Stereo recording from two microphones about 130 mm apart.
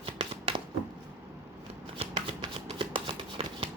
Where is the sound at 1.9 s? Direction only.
45° right (ahead or behind).